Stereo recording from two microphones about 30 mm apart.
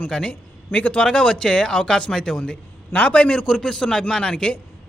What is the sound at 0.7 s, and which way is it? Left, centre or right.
Speech, left.